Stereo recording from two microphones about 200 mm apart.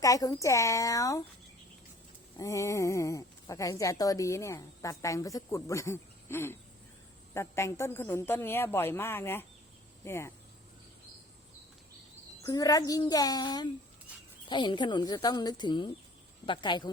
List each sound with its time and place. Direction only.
0.0 s speech: 15° left (ahead or behind)
2.4 s speech: 15° left (ahead or behind)
12.5 s speech: 20° left (ahead or behind)